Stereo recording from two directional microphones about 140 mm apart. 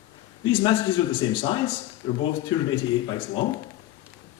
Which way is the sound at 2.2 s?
35° left (ahead or behind).